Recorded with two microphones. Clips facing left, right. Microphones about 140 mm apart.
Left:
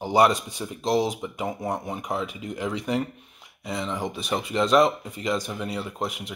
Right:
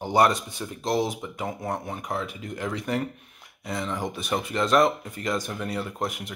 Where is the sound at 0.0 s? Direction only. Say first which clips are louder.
Left 1 dB; 5° left (ahead or behind).